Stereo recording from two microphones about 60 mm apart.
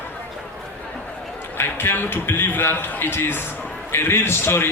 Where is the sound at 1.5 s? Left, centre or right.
Left.